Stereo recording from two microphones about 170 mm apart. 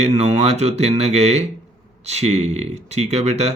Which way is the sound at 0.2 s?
40° right (ahead or behind).